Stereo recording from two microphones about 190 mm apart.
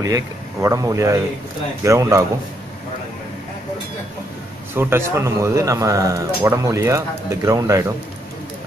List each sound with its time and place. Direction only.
0.0 s a man's voice: 15° right (ahead or behind)
4.7 s a man's voice: 10° right (ahead or behind)